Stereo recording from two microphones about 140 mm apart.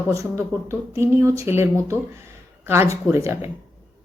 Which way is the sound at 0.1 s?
20° right (ahead or behind).